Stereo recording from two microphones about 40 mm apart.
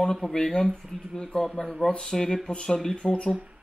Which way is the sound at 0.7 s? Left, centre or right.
Centre.